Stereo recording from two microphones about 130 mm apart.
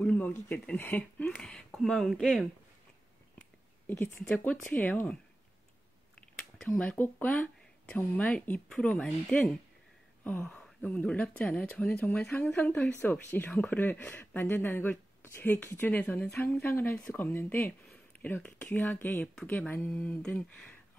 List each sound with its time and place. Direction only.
0.0 s speech: 10° left (ahead or behind)
3.9 s speech: 20° left (ahead or behind)
6.8 s speech: 10° left (ahead or behind)
16.5 s speech: 15° left (ahead or behind)